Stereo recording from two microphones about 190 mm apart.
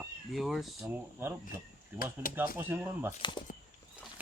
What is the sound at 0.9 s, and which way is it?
A man's voice, 10° right (ahead or behind).